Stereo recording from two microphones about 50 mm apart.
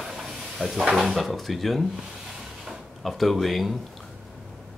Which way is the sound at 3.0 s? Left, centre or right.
Centre.